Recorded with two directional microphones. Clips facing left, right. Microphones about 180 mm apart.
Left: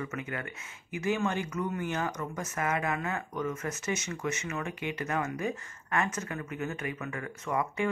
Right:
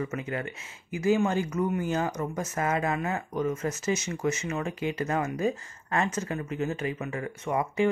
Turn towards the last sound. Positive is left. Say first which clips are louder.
# right 4 dB
turn(degrees=-25)  # may be behind; listen again after turning